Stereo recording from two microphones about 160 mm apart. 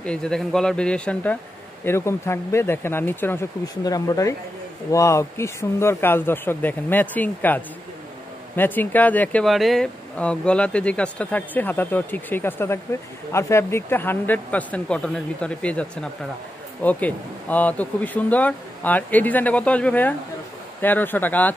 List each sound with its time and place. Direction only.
0.0 s speech: 5° left (ahead or behind)
3.6 s speech: 25° left (ahead or behind)